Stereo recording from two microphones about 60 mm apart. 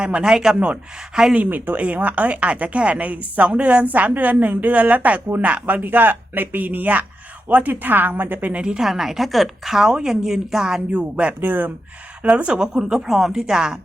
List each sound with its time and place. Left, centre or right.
0.0 s speech: centre
1.4 s speech: right
8.6 s a woman's voice: centre
11.3 s speech: right
12.2 s speech: centre